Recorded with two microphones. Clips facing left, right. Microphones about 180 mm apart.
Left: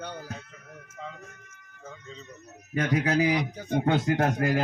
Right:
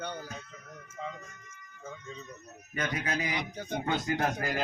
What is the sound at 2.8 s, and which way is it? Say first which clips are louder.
Speech: left 9 dB; 70° left (ahead or behind).